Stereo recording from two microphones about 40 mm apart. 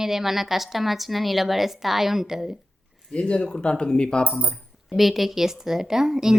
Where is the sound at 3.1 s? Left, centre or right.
Left.